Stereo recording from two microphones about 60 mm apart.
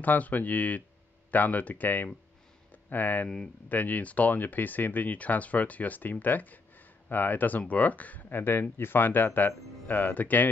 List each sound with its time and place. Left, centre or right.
0.0 s speech: left